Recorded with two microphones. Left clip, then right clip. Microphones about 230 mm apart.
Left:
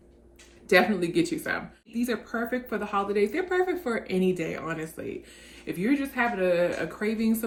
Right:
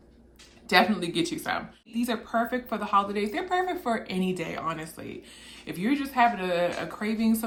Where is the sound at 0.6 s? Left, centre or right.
Centre.